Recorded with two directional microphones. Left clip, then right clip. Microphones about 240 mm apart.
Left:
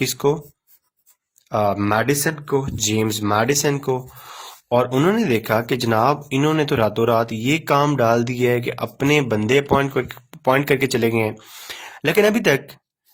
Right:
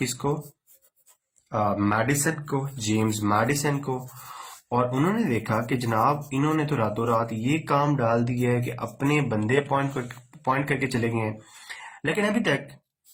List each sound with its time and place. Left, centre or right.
0.0 s speech: left
1.5 s speech: left